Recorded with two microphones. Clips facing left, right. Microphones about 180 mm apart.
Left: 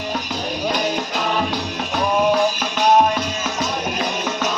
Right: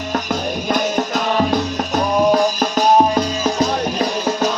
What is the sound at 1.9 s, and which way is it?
Music, 40° right (ahead or behind).